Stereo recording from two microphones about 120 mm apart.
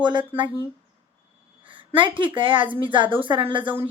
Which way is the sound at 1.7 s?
45° right (ahead or behind).